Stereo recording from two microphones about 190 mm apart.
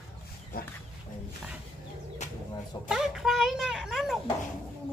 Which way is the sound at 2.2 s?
35° left (ahead or behind).